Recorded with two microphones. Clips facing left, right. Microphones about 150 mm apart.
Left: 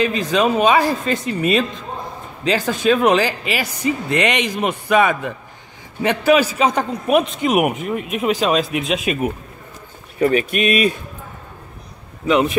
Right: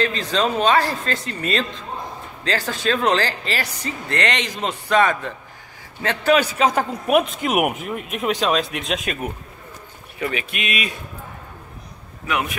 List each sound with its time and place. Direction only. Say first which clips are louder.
0.0 s a man's voice: left 4 dB; 10° left (ahead or behind)
10.1 s speech: left 10 dB; 40° left (ahead or behind)
12.3 s speech: left 8 dB; 25° left (ahead or behind)